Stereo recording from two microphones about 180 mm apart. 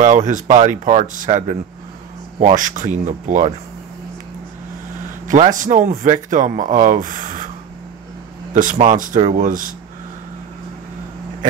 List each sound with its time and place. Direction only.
0.0 s speech: 45° right (ahead or behind)
5.2 s speech: 45° right (ahead or behind)
8.5 s speech: 45° right (ahead or behind)